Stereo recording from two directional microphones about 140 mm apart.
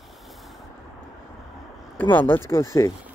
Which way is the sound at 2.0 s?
15° left (ahead or behind).